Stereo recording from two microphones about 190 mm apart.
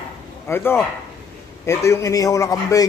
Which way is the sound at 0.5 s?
10° left (ahead or behind).